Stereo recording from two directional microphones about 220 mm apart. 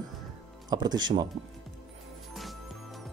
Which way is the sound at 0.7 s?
20° right (ahead or behind).